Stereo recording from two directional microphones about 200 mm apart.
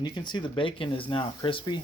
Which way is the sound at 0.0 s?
20° left (ahead or behind).